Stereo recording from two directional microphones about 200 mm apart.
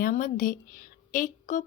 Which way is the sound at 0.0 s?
40° left (ahead or behind).